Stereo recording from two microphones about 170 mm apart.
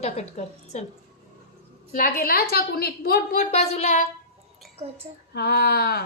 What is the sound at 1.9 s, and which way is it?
A woman's voice, 55° left (ahead or behind).